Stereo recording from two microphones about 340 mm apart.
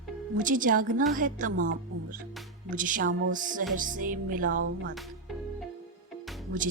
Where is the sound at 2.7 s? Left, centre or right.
Right.